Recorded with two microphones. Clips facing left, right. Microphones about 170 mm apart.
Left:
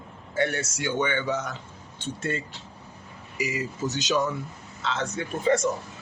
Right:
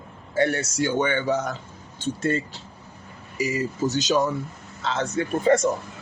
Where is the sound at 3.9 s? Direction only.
40° right (ahead or behind).